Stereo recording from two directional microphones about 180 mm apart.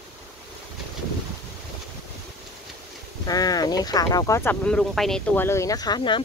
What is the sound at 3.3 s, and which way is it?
A woman's voice, 20° left (ahead or behind).